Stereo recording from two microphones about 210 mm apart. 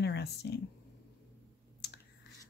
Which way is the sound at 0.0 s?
50° left (ahead or behind).